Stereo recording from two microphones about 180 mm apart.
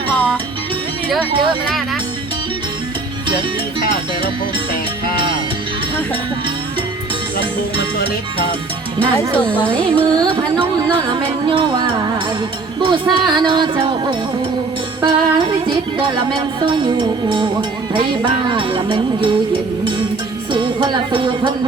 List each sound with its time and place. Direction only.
0.1 s music: 10° left (ahead or behind)
1.6 s speech: centre (ahead or behind)
9.4 s speech: 5° left (ahead or behind)
9.8 s music: 30° right (ahead or behind)
20.5 s music: 25° right (ahead or behind)